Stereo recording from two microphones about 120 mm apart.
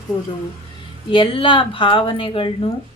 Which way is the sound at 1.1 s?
45° left (ahead or behind).